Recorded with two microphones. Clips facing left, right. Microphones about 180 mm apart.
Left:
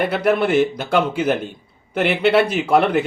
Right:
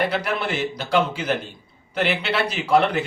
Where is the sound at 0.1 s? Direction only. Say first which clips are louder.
Left 8 dB; 55° left (ahead or behind).